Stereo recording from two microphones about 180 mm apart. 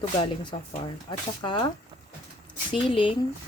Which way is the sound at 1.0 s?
25° left (ahead or behind).